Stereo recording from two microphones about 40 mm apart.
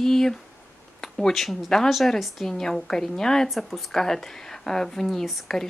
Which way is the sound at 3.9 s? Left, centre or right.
Centre.